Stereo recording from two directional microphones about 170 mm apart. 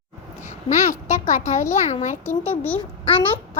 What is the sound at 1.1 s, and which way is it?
A child's voice, 45° left (ahead or behind).